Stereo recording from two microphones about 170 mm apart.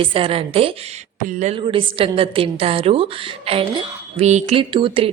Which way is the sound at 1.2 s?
45° right (ahead or behind).